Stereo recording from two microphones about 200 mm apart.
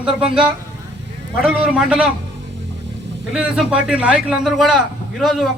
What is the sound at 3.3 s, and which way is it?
A man's voice, 5° right (ahead or behind).